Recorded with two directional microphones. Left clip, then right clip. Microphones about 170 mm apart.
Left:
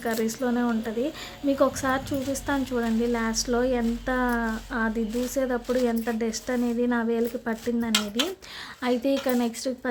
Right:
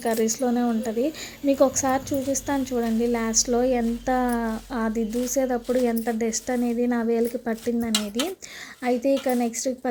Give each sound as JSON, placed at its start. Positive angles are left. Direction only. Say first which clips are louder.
{"t": 0.0, "sound": "a woman's voice", "louder": "right 4 dB", "side_deg": -20}